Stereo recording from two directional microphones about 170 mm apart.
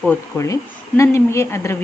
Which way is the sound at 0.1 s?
15° left (ahead or behind).